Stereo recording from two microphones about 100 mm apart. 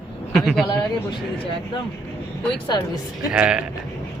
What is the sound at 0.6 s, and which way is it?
Speech, 50° left (ahead or behind).